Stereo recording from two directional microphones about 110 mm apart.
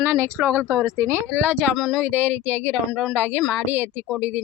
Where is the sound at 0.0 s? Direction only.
20° right (ahead or behind).